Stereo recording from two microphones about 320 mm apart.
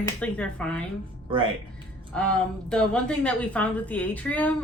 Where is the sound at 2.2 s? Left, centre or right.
Centre.